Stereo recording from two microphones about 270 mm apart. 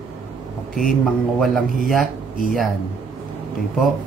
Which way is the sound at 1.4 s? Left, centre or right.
Centre.